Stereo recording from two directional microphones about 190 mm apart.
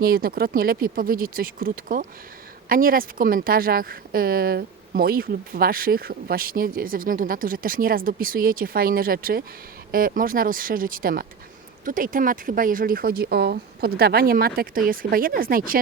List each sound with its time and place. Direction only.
0.0 s speech: 50° right (ahead or behind)